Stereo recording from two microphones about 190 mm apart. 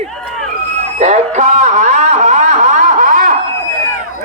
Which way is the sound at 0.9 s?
35° right (ahead or behind).